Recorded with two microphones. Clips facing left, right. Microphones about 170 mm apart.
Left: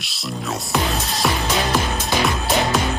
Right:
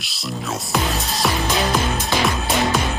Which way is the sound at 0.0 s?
Centre (ahead or behind).